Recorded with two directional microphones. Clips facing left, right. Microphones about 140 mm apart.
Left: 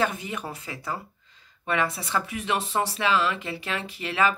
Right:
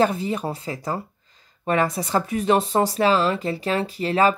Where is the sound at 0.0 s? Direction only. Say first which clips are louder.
Right 7 dB; 35° right (ahead or behind).